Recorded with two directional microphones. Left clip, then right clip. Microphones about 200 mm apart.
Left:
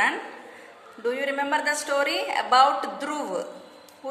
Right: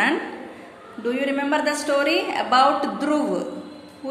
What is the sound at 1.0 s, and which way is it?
A woman's voice, 30° left (ahead or behind).